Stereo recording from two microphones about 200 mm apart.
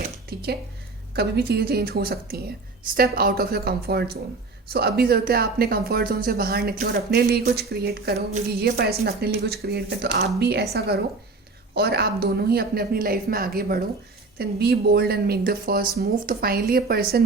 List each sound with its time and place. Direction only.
1.1 s speech: 50° right (ahead or behind)